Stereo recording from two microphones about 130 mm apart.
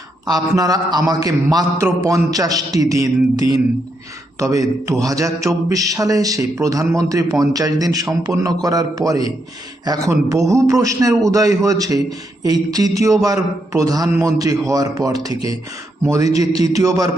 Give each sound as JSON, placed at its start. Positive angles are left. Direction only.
{"t": 0.3, "sound": "a man's voice", "side_deg": -30}